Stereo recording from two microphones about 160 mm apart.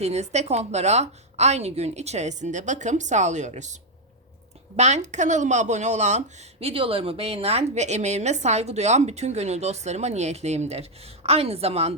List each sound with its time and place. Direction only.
0.0 s speech: 45° right (ahead or behind)
4.8 s speech: 45° right (ahead or behind)